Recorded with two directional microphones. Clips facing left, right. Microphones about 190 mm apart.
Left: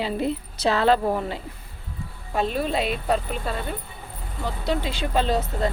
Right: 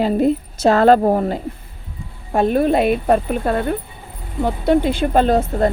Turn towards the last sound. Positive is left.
turn(degrees=-50)  # may be behind; listen again after turning